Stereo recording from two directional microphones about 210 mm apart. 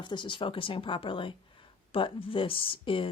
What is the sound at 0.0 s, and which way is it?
A woman's voice, 20° left (ahead or behind).